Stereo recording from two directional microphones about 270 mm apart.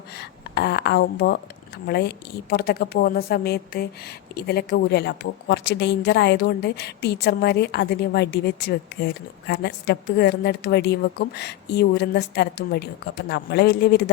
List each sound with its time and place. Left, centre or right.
0.2 s a woman's voice: left